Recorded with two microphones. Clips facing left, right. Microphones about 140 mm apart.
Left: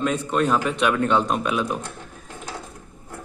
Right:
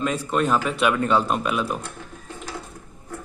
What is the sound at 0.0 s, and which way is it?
A man's voice, centre (ahead or behind).